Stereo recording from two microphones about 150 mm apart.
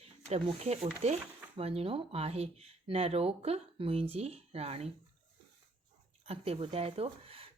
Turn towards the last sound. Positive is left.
turn(degrees=-40)  # may be behind; listen again after turning